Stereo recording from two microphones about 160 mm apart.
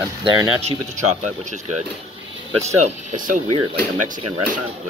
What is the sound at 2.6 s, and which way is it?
Speech, 45° right (ahead or behind).